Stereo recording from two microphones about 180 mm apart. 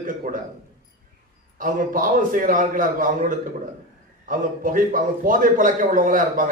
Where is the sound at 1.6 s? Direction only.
50° right (ahead or behind).